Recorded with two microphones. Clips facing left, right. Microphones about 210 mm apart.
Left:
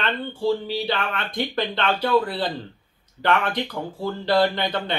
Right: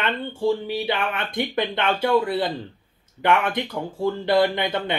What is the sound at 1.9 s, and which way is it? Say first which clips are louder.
Speech: right 2 dB; 20° right (ahead or behind).